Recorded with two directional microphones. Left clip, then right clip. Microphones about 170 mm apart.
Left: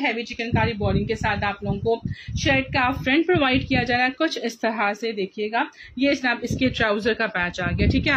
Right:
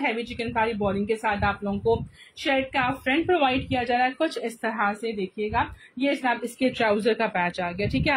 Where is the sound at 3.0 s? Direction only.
30° left (ahead or behind).